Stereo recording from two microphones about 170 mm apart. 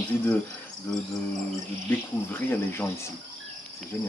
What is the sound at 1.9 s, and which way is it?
Speech, 10° left (ahead or behind).